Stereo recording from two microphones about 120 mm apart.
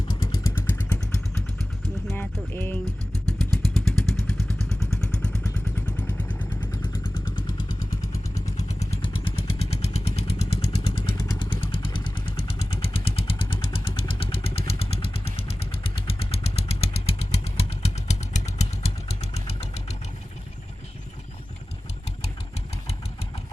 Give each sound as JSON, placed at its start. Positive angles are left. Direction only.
{"t": 0.1, "sound": "vehicle", "side_deg": 40}
{"t": 0.4, "sound": "vehicle", "side_deg": 20}
{"t": 2.1, "sound": "music", "side_deg": 15}
{"t": 3.8, "sound": "vehicle", "side_deg": 5}
{"t": 7.3, "sound": "vehicle", "side_deg": 40}
{"t": 8.0, "sound": "vehicle", "side_deg": 25}
{"t": 9.0, "sound": "vehicle", "side_deg": 45}
{"t": 11.2, "sound": "vehicle", "side_deg": 35}